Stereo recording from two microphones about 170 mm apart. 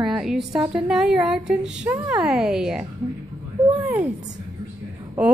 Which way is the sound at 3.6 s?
20° right (ahead or behind).